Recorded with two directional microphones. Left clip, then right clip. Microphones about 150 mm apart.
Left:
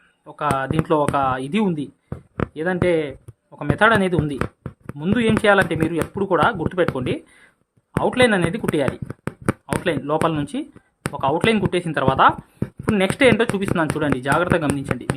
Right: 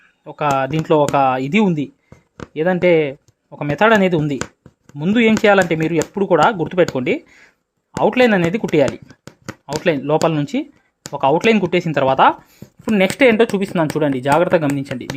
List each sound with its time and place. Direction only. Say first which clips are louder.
0.3 s speech: right 4 dB; 35° right (ahead or behind)
4.4 s a sound: even; 30° left (ahead or behind)
4.9 s speech: right 5 dB; 25° right (ahead or behind)
8.9 s shuffling cards: left 1 dB; 40° left (ahead or behind)
9.8 s speech: right 5 dB; 30° right (ahead or behind)